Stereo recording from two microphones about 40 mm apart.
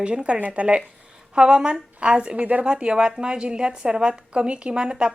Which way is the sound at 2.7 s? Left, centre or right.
Right.